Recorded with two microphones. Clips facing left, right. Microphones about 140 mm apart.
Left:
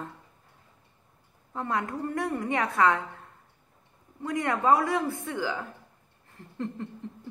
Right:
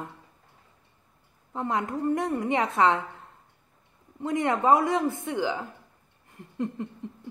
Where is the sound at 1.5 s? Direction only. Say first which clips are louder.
Right 2 dB; 20° right (ahead or behind).